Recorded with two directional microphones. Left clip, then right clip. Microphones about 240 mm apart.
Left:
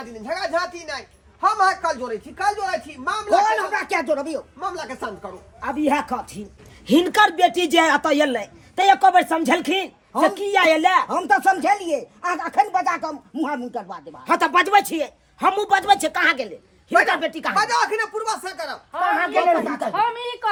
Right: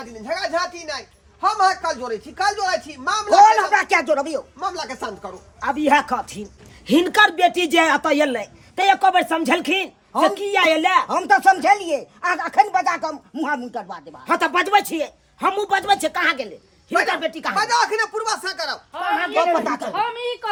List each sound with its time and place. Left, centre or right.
0.0 s speech: centre
3.4 s speech: centre
4.6 s speech: centre
6.8 s speech: centre
18.9 s speech: centre